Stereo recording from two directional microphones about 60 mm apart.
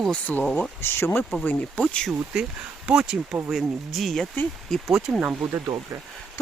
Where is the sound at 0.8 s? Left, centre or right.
Left.